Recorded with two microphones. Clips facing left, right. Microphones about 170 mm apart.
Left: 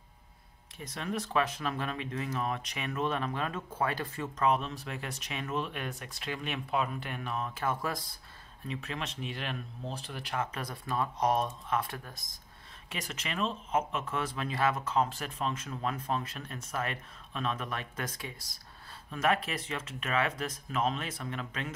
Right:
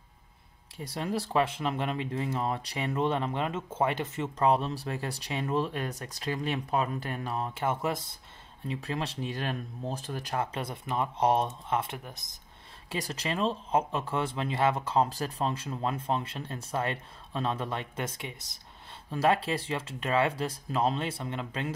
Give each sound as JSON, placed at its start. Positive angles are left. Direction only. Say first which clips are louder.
{"t": 0.7, "sound": "speech", "louder": "right 4 dB", "side_deg": -30}
{"t": 12.9, "sound": "speech", "louder": "right 5 dB", "side_deg": -35}